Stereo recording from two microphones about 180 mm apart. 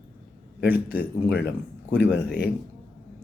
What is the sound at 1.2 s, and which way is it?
A man's voice, 65° left (ahead or behind).